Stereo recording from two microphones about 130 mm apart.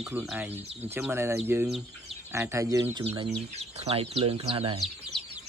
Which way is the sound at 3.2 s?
50° right (ahead or behind).